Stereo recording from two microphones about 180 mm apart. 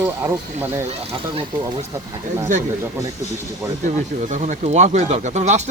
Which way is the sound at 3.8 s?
40° right (ahead or behind).